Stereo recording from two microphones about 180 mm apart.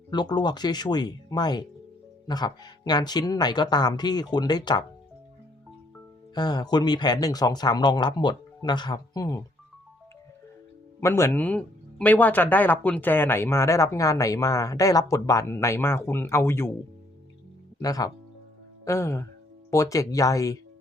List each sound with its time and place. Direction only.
0.1 s speech: 25° left (ahead or behind)
6.3 s speech: 25° left (ahead or behind)
11.0 s speech: 15° left (ahead or behind)
17.7 s speech: 20° left (ahead or behind)